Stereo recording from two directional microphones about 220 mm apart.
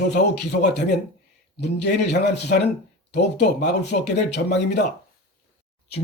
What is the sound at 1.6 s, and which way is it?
A man's voice, 50° left (ahead or behind).